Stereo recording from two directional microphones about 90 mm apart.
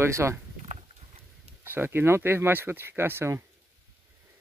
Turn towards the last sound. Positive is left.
turn(degrees=-25)  # may be behind; listen again after turning